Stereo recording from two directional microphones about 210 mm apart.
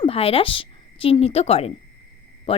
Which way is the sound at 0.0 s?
25° left (ahead or behind).